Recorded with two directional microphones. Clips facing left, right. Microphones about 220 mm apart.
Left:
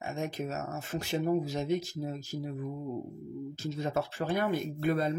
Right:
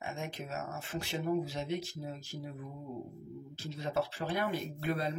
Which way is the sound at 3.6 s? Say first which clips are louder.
Left 2 dB; 45° left (ahead or behind).